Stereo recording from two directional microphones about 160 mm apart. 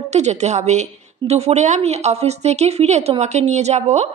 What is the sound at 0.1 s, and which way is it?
A woman's voice, 45° right (ahead or behind).